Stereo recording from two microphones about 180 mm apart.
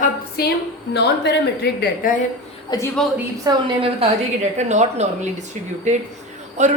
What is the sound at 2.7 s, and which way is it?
Speech, 20° left (ahead or behind).